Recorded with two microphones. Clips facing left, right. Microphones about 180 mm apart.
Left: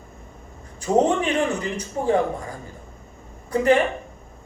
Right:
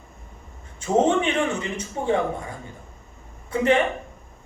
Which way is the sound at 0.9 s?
40° left (ahead or behind).